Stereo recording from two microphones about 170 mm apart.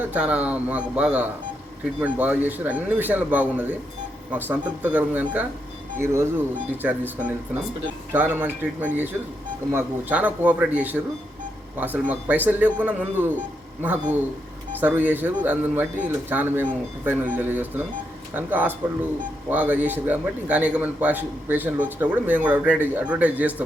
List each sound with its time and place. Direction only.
0.0 s a man's voice: 10° right (ahead or behind)
6.8 s a man's voice: 10° right (ahead or behind)